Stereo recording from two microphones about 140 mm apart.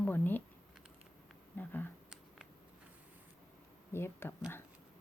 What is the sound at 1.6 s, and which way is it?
Speech, 15° left (ahead or behind).